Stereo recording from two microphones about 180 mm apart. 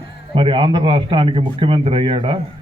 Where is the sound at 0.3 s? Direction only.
30° right (ahead or behind).